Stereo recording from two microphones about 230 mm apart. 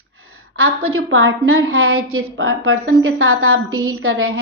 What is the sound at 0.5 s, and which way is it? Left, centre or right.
A woman's voice, right.